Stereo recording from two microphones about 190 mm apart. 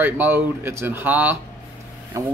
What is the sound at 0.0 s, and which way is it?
Speech, 10° right (ahead or behind).